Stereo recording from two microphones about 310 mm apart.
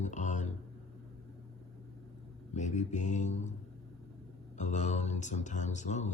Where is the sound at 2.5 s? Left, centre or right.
Left.